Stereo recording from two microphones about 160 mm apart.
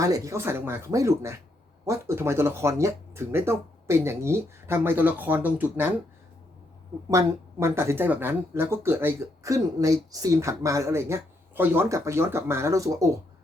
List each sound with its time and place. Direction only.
0.0 s speech: 20° right (ahead or behind)
7.1 s speech: 15° right (ahead or behind)